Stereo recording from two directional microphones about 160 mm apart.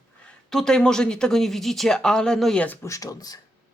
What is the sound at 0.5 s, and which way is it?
A woman's voice, 5° left (ahead or behind).